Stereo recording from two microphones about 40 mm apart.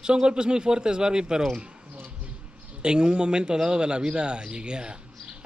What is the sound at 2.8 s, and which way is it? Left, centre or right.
A man's voice, right.